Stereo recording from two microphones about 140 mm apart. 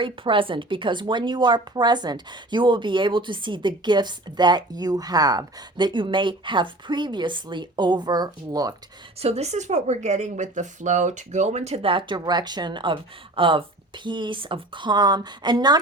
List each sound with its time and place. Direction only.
0.0 s speech: 40° right (ahead or behind)
9.2 s speech: 50° right (ahead or behind); by 15.8 s 30° right (ahead or behind)